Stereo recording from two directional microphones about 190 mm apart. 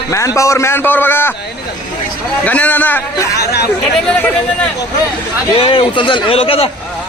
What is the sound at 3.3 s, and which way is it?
Speech, 60° left (ahead or behind).